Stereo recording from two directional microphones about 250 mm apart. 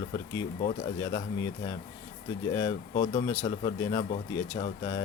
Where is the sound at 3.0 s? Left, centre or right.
Centre.